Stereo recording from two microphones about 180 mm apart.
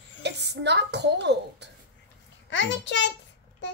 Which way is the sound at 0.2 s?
70° right (ahead or behind).